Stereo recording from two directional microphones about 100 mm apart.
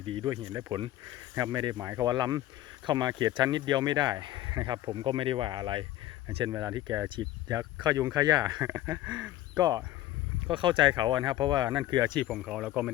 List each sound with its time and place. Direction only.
0.0 s speech: 60° right (ahead or behind)
0.3 s speech: 45° right (ahead or behind)
1.8 s speech: 35° right (ahead or behind)
6.5 s speech: 30° right (ahead or behind)
7.2 s speech: 40° right (ahead or behind)
8.6 s speech: 25° right (ahead or behind)
9.6 s speech: 40° right (ahead or behind)
10.4 s speech: 55° right (ahead or behind)
12.4 s speech: 5° right (ahead or behind)